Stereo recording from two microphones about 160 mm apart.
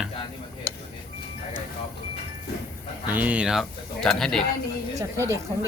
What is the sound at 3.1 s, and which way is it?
Speech, 10° right (ahead or behind).